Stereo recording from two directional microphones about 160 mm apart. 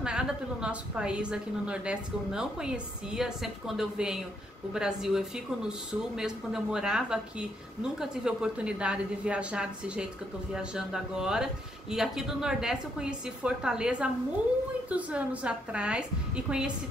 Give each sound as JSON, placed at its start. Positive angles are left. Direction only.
{"t": 0.0, "sound": "a woman's voice", "side_deg": -5}